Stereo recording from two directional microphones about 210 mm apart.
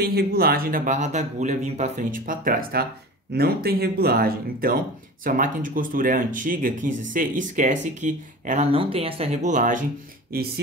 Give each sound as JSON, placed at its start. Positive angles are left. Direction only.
{"t": 0.0, "sound": "speech", "side_deg": -50}
{"t": 10.3, "sound": "speech", "side_deg": -50}